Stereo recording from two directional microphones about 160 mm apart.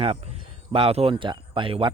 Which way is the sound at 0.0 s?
40° right (ahead or behind).